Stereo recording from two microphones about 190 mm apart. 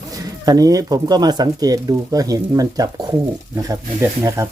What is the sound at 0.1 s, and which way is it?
Speech, 20° right (ahead or behind).